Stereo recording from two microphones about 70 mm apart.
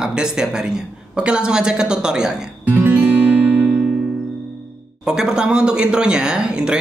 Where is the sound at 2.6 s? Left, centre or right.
Right.